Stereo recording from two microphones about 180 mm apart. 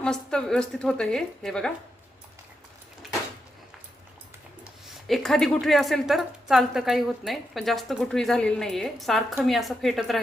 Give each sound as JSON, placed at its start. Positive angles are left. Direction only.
{"t": 0.0, "sound": "a woman's voice", "side_deg": 5}
{"t": 5.0, "sound": "a woman's voice", "side_deg": 0}